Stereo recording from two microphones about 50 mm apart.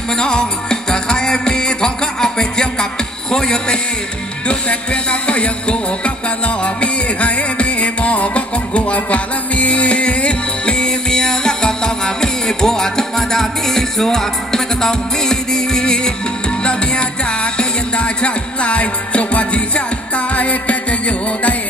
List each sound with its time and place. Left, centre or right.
0.1 s music: centre